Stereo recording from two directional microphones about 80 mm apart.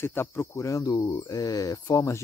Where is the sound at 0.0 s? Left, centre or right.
Left.